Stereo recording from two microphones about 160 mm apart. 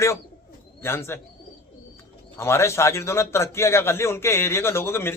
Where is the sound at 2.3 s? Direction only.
15° left (ahead or behind).